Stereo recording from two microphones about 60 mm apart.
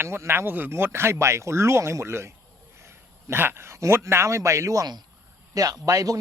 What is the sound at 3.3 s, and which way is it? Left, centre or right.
Speech, right.